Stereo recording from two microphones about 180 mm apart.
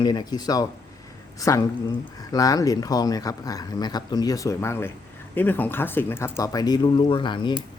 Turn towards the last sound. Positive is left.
turn(degrees=25)  # may be behind; listen again after turning